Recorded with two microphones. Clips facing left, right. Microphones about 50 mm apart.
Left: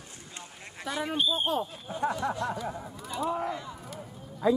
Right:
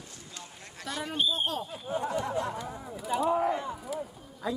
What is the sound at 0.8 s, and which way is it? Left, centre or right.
Speech, left.